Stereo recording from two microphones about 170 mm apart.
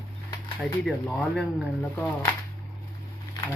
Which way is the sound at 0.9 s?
Centre (ahead or behind).